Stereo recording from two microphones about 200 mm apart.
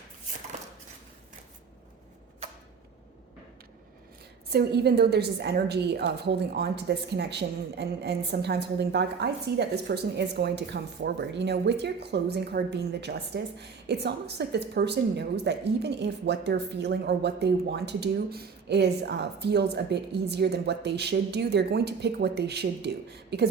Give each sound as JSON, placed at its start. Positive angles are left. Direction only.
{"t": 4.4, "sound": "a woman's voice", "side_deg": -55}